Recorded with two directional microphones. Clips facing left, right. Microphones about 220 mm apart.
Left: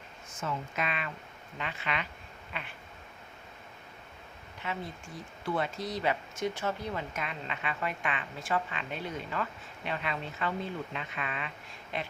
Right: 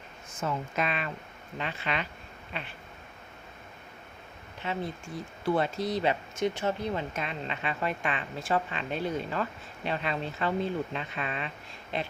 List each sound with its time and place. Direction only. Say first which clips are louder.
0.4 s speech: right 4 dB; 35° right (ahead or behind)
4.6 s speech: right 4 dB; 30° right (ahead or behind)